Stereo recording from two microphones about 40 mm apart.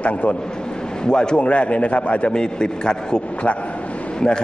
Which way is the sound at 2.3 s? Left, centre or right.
Centre.